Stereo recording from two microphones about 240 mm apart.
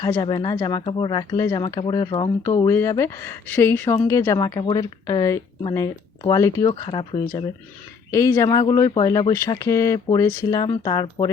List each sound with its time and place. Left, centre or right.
0.0 s speech: centre